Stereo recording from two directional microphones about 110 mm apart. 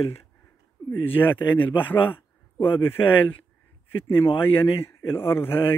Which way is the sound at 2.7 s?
55° left (ahead or behind).